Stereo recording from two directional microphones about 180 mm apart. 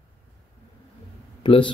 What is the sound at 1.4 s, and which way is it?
Speech, 25° left (ahead or behind).